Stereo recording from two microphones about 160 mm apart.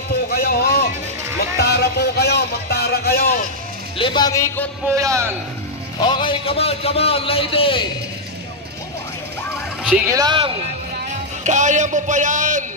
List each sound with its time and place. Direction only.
0.3 s a sound: 75° left (ahead or behind)
1.6 s a sound: 90° left; by 3.3 s 75° left (ahead or behind)
4.0 s a man's voice: 25° left (ahead or behind)
4.8 s a man's voice: 20° right (ahead or behind)
5.9 s a man's voice: 30° left (ahead or behind)
10.1 s a man's voice: 30° right (ahead or behind)
11.4 s a man's voice: 50° right (ahead or behind)